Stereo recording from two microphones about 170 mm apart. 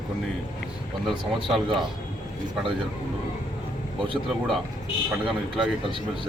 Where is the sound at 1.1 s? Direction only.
25° right (ahead or behind).